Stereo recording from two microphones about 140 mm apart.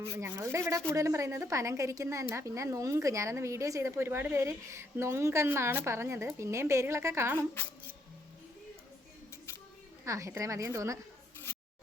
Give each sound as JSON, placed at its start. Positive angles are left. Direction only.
{"t": 0.0, "sound": "a woman's voice", "side_deg": -20}
{"t": 7.3, "sound": "speech", "side_deg": 15}
{"t": 10.1, "sound": "a woman's voice", "side_deg": -20}